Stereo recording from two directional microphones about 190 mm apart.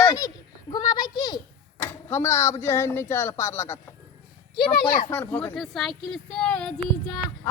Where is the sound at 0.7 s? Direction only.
20° left (ahead or behind).